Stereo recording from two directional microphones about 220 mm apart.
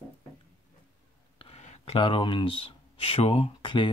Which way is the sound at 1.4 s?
30° left (ahead or behind).